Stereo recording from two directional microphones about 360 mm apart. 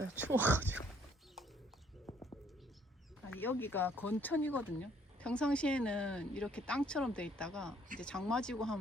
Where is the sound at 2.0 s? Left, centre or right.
Centre.